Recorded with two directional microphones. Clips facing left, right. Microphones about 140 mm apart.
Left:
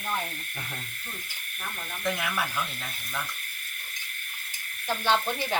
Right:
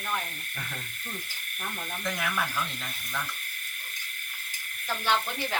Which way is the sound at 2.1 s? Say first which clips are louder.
Left 2 dB; 5° left (ahead or behind).